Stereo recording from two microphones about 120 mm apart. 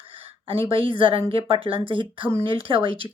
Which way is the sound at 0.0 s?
50° right (ahead or behind).